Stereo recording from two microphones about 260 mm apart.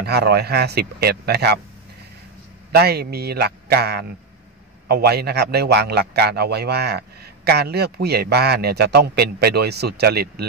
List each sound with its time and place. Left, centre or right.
0.0 s a man's voice: right
2.7 s a man's voice: right